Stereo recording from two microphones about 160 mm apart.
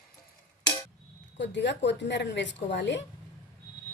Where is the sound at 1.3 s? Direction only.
90° left.